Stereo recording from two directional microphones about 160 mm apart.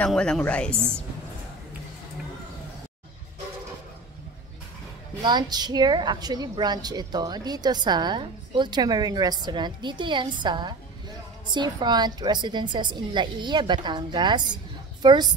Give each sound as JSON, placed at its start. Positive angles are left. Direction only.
{"t": 0.0, "sound": "a woman's voice", "side_deg": 5}
{"t": 0.7, "sound": "a woman's voice", "side_deg": -15}
{"t": 5.2, "sound": "a woman's voice", "side_deg": -25}